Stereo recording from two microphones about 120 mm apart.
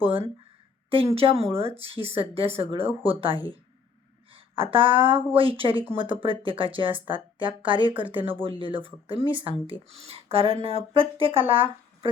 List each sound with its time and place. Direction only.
0.0 s speech: 50° right (ahead or behind)
7.9 s speech: 15° right (ahead or behind)
8.4 s speech: 45° right (ahead or behind)